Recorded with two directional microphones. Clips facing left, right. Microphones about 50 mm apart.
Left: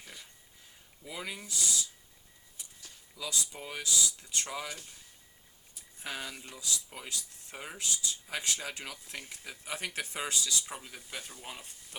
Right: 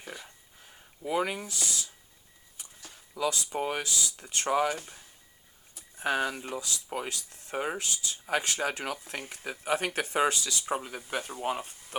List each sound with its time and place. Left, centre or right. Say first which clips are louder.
0.0 s speech: right 7 dB; right
1.5 s a sound: even; right
2.6 s speech: right 4 dB; right